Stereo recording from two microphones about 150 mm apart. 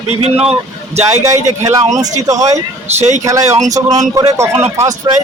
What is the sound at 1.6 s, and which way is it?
Speech, 20° right (ahead or behind).